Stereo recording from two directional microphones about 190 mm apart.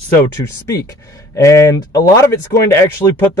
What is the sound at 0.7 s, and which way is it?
Speech, 15° left (ahead or behind).